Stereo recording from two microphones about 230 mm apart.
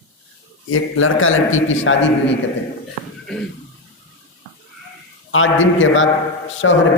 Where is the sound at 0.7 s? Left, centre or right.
Left.